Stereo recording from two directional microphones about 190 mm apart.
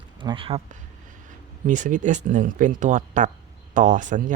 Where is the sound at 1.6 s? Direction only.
45° right (ahead or behind).